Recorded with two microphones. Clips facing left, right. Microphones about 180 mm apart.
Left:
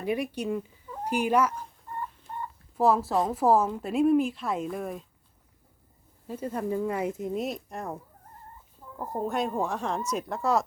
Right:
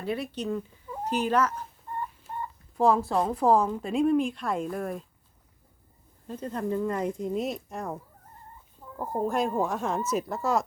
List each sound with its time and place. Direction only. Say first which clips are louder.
0.0 s speech: left 2 dB; 15° left (ahead or behind)
2.7 s a woman's voice: even; 5° left (ahead or behind)
6.2 s speech: even; 10° left (ahead or behind)
9.0 s a woman's voice: right 2 dB; centre (ahead or behind)